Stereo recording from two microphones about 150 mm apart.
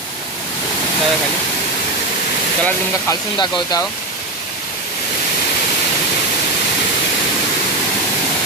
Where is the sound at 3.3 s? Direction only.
30° left (ahead or behind).